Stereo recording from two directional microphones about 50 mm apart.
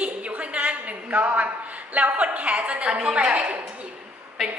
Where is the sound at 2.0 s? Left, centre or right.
Right.